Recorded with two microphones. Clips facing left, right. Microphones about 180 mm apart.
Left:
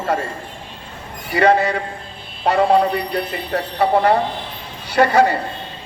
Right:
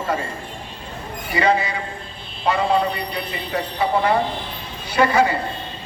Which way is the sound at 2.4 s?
60° left (ahead or behind).